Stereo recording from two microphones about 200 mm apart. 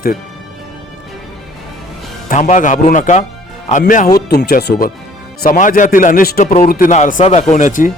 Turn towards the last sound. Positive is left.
turn(degrees=40)  # may be behind; listen again after turning